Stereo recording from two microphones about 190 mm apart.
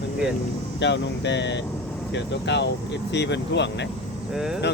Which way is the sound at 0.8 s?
70° left (ahead or behind).